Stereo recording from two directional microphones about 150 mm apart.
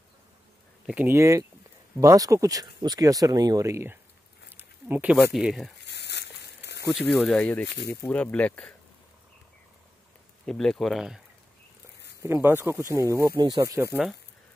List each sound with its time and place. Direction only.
0.8 s speech: 10° right (ahead or behind)
4.5 s a sound: 15° right (ahead or behind)
5.3 s speech: centre (ahead or behind)
6.1 s a sound: 90° left
7.2 s speech: 5° left (ahead or behind)
7.6 s speech: 90° left
8.0 s speech: 10° left (ahead or behind)
10.4 s speech: 5° left (ahead or behind)
12.2 s speech: 15° right (ahead or behind)